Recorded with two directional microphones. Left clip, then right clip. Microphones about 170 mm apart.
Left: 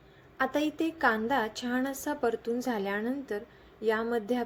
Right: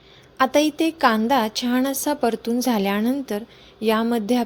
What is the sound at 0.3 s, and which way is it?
A woman's voice, 45° right (ahead or behind).